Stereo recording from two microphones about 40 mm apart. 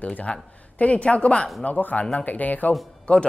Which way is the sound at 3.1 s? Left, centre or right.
Left.